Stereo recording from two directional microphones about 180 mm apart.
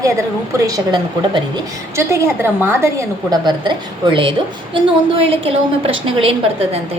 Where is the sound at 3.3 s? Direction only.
25° right (ahead or behind).